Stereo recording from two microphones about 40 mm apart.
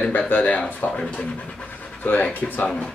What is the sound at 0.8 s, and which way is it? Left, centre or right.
Speech, left.